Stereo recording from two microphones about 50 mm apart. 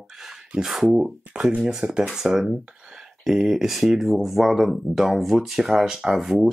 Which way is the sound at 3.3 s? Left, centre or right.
Centre.